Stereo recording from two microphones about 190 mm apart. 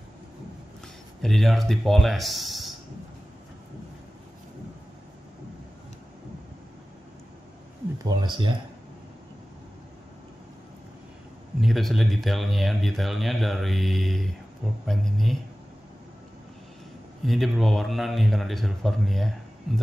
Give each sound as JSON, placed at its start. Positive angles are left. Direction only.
{"t": 1.2, "sound": "speech", "side_deg": 0}
{"t": 8.0, "sound": "speech", "side_deg": -20}
{"t": 11.6, "sound": "speech", "side_deg": 0}
{"t": 17.2, "sound": "speech", "side_deg": 0}